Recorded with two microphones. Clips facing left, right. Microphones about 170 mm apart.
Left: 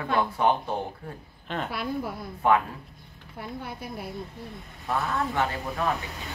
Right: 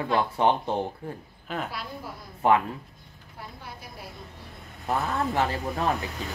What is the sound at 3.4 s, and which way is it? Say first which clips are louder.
Speech: left 6 dB; 55° left (ahead or behind).